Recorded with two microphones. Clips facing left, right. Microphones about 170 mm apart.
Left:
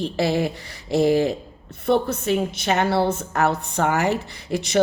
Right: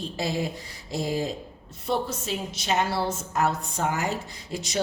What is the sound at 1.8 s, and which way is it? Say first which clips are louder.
Speech: left 8 dB; 60° left (ahead or behind).